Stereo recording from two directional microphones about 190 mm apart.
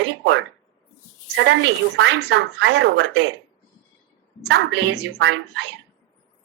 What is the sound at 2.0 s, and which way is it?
Speech, 65° right (ahead or behind).